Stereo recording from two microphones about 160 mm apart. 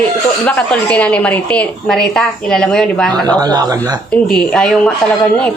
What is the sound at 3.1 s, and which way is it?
Speech, 25° right (ahead or behind).